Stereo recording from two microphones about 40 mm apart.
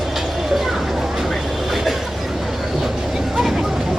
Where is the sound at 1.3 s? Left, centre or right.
Centre.